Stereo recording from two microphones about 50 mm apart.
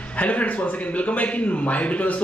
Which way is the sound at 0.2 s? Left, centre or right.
Left.